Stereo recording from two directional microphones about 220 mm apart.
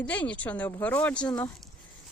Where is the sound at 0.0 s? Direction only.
5° left (ahead or behind).